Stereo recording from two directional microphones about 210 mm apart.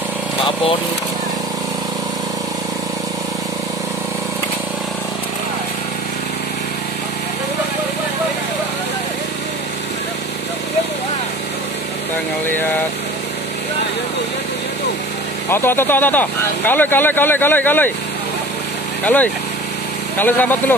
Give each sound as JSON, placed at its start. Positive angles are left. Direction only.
{"t": 15.5, "sound": "speech", "side_deg": 10}
{"t": 19.0, "sound": "speech", "side_deg": 10}